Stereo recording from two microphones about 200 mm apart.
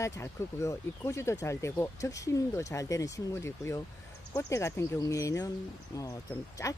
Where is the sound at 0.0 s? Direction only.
15° left (ahead or behind).